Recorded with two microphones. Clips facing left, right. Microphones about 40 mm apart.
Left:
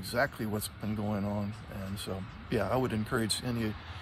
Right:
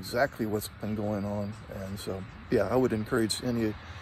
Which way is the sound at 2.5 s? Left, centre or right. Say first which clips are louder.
Right 5 dB; left.